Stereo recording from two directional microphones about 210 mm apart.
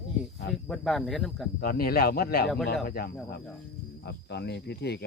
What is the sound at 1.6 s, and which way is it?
Speech, 45° left (ahead or behind).